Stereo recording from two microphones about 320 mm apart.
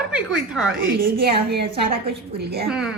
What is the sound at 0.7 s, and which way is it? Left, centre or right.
A woman's voice, right.